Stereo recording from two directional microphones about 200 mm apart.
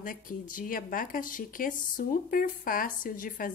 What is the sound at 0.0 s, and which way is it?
A woman's voice, 45° left (ahead or behind).